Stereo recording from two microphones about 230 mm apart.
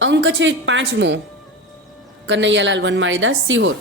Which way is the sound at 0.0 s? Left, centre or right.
Right.